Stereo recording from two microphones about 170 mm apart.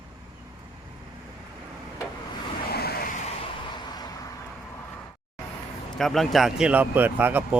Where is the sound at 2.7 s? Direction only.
65° left (ahead or behind).